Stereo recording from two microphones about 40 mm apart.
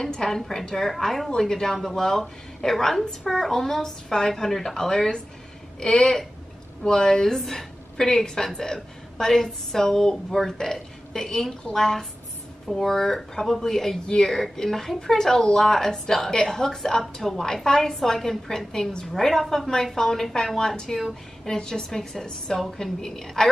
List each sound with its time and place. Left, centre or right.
0.0 s a woman's voice: centre